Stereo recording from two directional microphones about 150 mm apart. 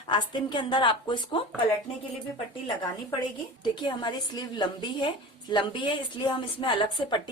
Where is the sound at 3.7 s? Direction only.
30° left (ahead or behind).